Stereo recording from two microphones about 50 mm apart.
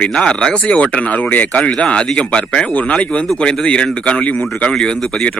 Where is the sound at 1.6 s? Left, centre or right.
Centre.